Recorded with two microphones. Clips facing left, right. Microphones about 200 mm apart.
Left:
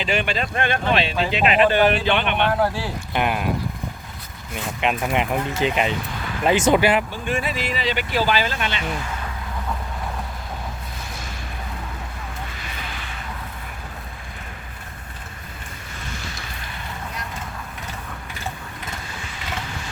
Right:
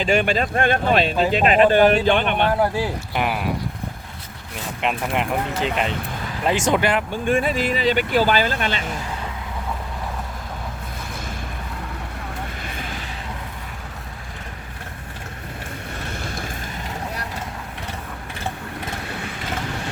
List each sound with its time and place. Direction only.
0.0 s speech: 45° right (ahead or behind)
3.1 s speech: 5° right (ahead or behind)
4.5 s speech: centre (ahead or behind)
7.1 s speech: 50° right (ahead or behind)
12.6 s a sound: 50° right (ahead or behind)
16.1 s boat: 55° right (ahead or behind)
19.0 s vehicle: 60° right (ahead or behind)